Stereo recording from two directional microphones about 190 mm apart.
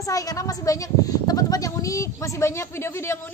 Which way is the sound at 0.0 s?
20° left (ahead or behind).